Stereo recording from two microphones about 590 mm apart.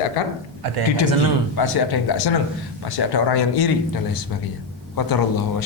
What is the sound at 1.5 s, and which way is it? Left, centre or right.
Speech, left.